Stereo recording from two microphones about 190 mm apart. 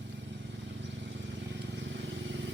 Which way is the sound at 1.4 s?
70° right (ahead or behind).